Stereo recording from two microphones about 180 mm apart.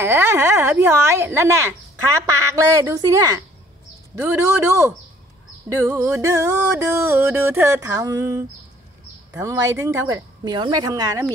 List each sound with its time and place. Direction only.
0.0 s music: 15° right (ahead or behind)
2.5 s music: 15° right (ahead or behind)
9.3 s speech: 15° right (ahead or behind)